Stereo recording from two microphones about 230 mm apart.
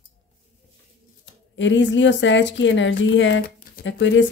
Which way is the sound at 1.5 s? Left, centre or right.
Left.